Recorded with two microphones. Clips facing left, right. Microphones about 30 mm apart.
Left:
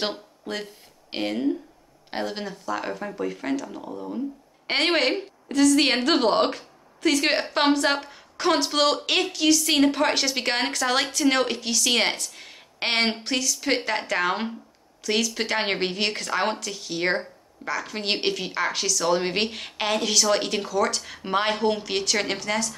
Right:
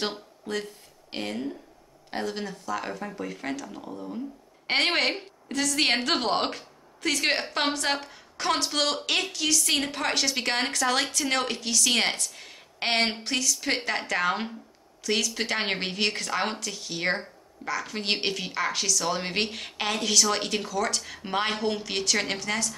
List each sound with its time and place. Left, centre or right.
0.0 s a woman's voice: centre